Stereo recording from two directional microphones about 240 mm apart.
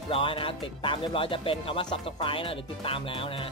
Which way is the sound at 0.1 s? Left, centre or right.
Left.